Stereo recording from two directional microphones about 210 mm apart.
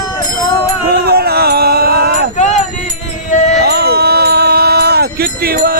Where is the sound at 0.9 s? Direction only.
50° right (ahead or behind).